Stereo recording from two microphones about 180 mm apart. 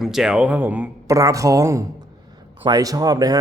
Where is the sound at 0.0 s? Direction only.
Centre (ahead or behind).